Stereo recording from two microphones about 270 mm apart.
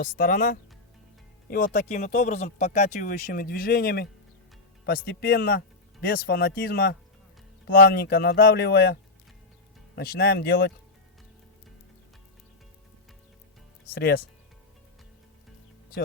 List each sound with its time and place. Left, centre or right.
0.0 s a man's voice: left
13.9 s a man's voice: left